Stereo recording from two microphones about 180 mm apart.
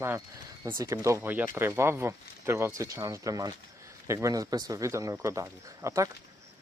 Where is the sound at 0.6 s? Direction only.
20° right (ahead or behind).